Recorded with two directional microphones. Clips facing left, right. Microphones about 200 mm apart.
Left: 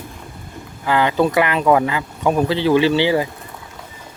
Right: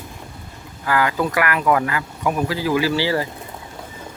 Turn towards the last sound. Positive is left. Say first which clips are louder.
# left 4 dB
turn(degrees=20)  # may be behind; listen again after turning